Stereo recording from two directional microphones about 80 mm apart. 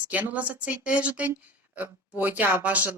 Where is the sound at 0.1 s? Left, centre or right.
Centre.